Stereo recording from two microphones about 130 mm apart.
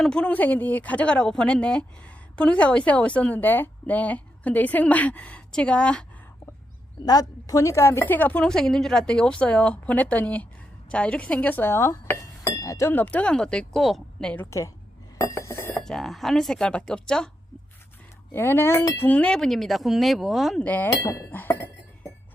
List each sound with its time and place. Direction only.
0.0 s a woman's voice: 5° left (ahead or behind)
7.0 s a woman's voice: 30° left (ahead or behind); by 14.4 s 5° left (ahead or behind)
15.2 s glass: 20° left (ahead or behind)
15.8 s speech: 5° left (ahead or behind)
18.3 s speech: 15° left (ahead or behind); by 20.7 s centre (ahead or behind)
20.7 s a woman's voice: 15° left (ahead or behind)